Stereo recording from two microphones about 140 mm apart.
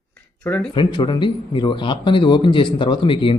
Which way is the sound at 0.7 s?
35° left (ahead or behind).